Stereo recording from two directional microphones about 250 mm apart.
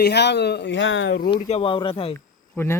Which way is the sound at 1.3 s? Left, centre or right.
Left.